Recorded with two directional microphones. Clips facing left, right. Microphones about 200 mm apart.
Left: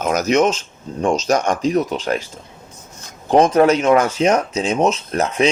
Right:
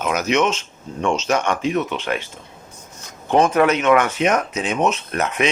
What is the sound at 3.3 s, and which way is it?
Speech, 35° left (ahead or behind).